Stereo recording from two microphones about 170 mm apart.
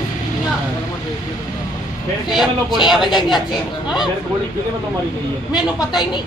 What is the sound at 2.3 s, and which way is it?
Speech, centre (ahead or behind).